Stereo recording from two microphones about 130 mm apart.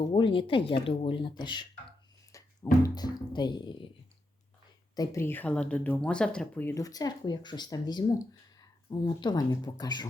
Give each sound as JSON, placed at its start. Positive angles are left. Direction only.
{"t": 0.1, "sound": "speech", "side_deg": 40}
{"t": 2.3, "sound": "music", "side_deg": 25}
{"t": 2.8, "sound": "speech", "side_deg": 30}
{"t": 4.9, "sound": "speech", "side_deg": 20}
{"t": 6.7, "sound": "speech", "side_deg": 30}